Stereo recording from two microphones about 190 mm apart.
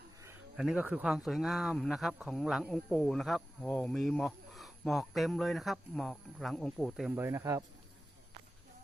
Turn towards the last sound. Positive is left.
turn(degrees=-15)  # may be behind; listen again after turning